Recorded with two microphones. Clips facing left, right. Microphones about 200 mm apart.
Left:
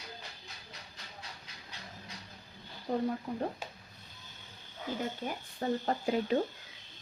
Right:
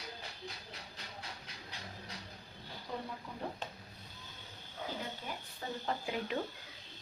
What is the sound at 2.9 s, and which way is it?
Speech, 40° left (ahead or behind).